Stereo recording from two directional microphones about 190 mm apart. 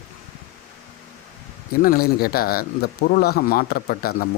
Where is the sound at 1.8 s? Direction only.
50° left (ahead or behind).